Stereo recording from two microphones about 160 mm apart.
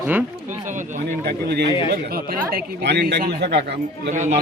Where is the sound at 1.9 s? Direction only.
70° right (ahead or behind).